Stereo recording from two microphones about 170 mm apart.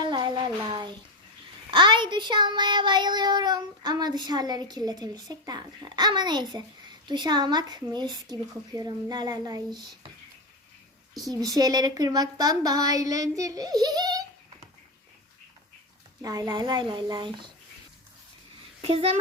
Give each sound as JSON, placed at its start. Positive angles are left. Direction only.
{"t": 0.0, "sound": "a sound", "side_deg": -25}
{"t": 1.7, "sound": "child singing", "side_deg": -30}
{"t": 11.3, "sound": "child singing", "side_deg": -20}
{"t": 16.2, "sound": "child singing", "side_deg": -20}
{"t": 18.8, "sound": "a child's voice", "side_deg": -35}